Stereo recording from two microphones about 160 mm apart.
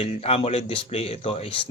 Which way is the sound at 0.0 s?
40° left (ahead or behind).